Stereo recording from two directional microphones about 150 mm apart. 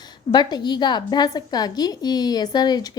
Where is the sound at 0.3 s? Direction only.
25° left (ahead or behind).